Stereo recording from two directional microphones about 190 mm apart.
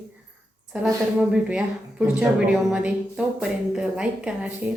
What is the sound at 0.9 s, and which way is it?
A woman's voice, 5° right (ahead or behind).